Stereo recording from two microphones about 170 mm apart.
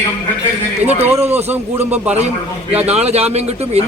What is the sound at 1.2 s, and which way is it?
Speech, 40° right (ahead or behind).